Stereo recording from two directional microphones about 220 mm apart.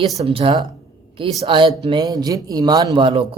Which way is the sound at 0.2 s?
25° right (ahead or behind).